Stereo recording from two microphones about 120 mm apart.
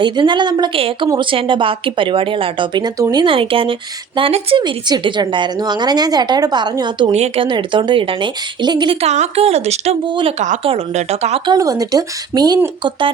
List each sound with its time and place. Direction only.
0.0 s a woman's voice: 40° right (ahead or behind)
3.2 s a woman's voice: 50° right (ahead or behind)
7.1 s a woman's voice: 65° right (ahead or behind)
7.4 s a woman's voice: 40° right (ahead or behind)
9.0 s a woman's voice: 65° right (ahead or behind)
11.4 s a woman's voice: 35° right (ahead or behind)